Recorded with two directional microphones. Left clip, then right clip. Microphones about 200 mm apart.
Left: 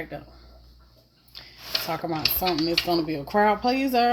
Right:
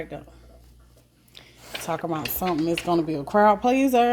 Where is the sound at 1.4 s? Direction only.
20° right (ahead or behind).